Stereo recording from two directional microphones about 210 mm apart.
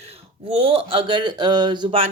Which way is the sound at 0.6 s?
25° right (ahead or behind).